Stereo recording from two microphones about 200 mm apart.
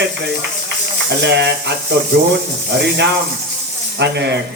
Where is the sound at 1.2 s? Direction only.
60° right (ahead or behind).